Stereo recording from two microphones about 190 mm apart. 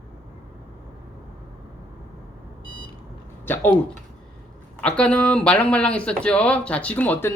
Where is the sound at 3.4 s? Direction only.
10° left (ahead or behind).